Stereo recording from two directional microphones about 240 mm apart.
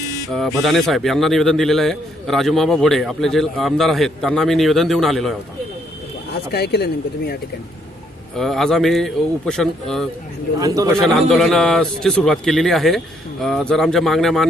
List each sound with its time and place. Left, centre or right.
0.3 s a man's voice: centre
6.5 s speech: left
8.4 s a man's voice: centre
10.6 s a man's voice: centre
11.3 s a man's voice: centre